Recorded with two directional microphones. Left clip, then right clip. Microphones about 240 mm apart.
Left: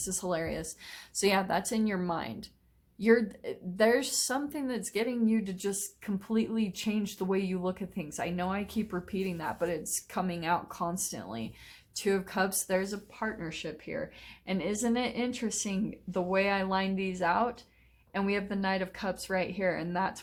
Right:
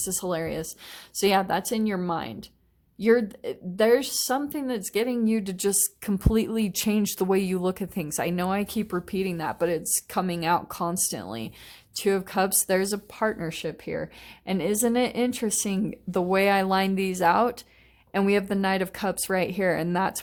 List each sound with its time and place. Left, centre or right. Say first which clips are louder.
0.0 s a woman's voice: right 4 dB; right